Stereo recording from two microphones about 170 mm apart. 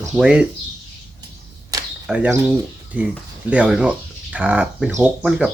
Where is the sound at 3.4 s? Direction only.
5° right (ahead or behind).